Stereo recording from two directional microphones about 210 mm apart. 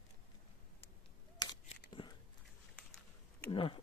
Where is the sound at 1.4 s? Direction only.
20° left (ahead or behind).